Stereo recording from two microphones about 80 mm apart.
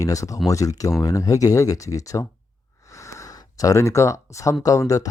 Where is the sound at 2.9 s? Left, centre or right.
Left.